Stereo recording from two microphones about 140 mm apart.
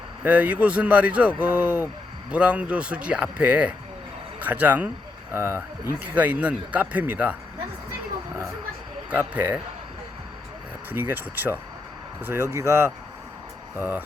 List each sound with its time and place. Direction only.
0.3 s a man's voice: 10° right (ahead or behind)
9.0 s a man's voice: 10° right (ahead or behind)
10.9 s a man's voice: 15° right (ahead or behind)